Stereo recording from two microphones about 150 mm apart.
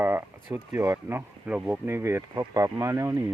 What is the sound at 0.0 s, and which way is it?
Speech, 15° right (ahead or behind).